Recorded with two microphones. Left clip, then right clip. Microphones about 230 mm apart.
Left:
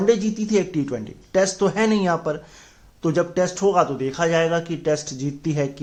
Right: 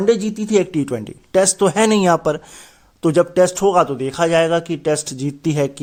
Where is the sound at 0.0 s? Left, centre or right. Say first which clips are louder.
Right 3 dB; right.